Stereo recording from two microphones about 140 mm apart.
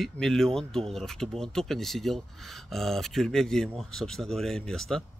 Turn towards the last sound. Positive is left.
turn(degrees=5)  # may be behind; listen again after turning